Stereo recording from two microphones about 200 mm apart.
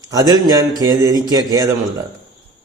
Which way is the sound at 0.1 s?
20° right (ahead or behind).